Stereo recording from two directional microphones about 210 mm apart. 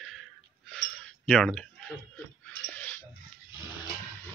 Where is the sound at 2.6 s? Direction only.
10° left (ahead or behind).